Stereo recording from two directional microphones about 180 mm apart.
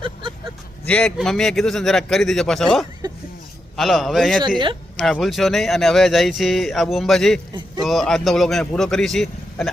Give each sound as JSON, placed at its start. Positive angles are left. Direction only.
{"t": 0.0, "sound": "a sound", "side_deg": -30}
{"t": 0.9, "sound": "speech", "side_deg": 5}
{"t": 4.4, "sound": "speech", "side_deg": -25}
{"t": 4.9, "sound": "speech", "side_deg": 0}